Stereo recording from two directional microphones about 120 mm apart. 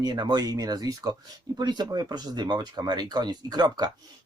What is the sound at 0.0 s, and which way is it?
Speech, 35° right (ahead or behind).